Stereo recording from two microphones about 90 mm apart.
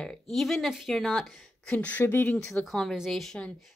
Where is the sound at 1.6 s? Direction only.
15° left (ahead or behind).